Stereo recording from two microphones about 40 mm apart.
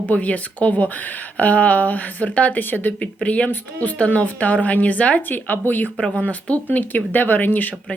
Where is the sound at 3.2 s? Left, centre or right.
Left.